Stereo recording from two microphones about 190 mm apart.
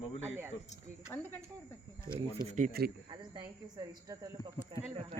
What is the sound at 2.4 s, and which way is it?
Speech, 40° right (ahead or behind).